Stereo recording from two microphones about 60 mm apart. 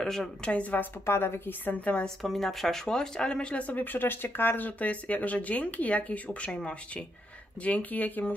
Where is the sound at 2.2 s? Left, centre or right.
Centre.